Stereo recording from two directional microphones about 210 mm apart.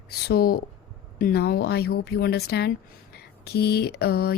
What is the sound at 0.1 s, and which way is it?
Speech, 50° left (ahead or behind).